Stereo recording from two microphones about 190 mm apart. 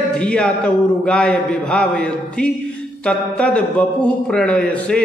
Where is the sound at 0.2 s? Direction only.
5° left (ahead or behind).